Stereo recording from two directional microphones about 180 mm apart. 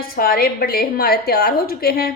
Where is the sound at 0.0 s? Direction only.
55° left (ahead or behind).